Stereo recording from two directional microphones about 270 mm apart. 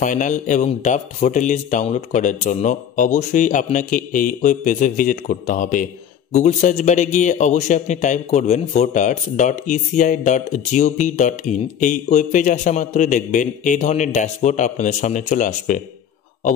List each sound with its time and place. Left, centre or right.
0.0 s a man's voice: left